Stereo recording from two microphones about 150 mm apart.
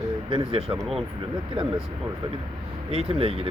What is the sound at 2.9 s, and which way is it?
Speech, 40° right (ahead or behind).